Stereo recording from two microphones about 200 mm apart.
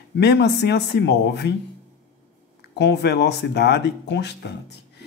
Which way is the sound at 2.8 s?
55° left (ahead or behind).